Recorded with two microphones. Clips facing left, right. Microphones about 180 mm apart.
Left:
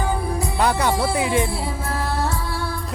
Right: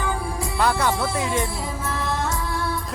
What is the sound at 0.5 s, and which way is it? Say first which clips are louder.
Music: left 1 dB; 20° left (ahead or behind).